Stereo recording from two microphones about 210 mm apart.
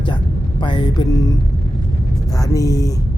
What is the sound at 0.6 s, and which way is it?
Music, 20° left (ahead or behind).